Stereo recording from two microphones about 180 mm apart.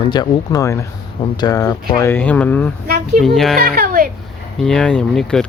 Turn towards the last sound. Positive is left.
turn(degrees=5)  # may be behind; listen again after turning